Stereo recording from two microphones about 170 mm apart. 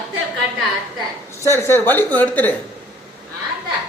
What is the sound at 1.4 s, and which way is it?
A woman's voice, 15° left (ahead or behind).